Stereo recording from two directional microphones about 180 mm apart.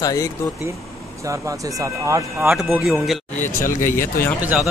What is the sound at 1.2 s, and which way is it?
Speech, 15° right (ahead or behind).